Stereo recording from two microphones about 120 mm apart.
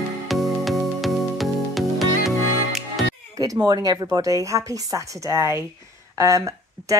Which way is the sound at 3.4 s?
30° right (ahead or behind).